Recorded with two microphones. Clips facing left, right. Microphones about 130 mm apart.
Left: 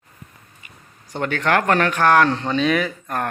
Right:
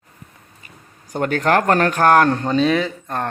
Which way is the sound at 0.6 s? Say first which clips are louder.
Right 4 dB; 45° right (ahead or behind).